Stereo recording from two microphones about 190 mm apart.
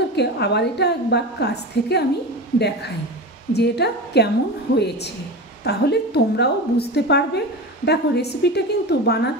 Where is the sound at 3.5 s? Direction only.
60° left (ahead or behind).